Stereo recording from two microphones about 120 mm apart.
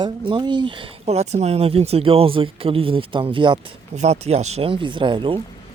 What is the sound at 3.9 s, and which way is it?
Speech, 65° right (ahead or behind).